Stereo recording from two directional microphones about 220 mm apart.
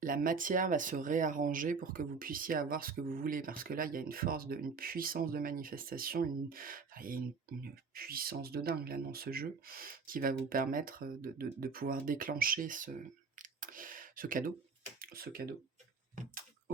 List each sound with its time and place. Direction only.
0.0 s speech: 40° right (ahead or behind)
13.3 s a sound: 35° right (ahead or behind)
14.9 s speech: 40° right (ahead or behind)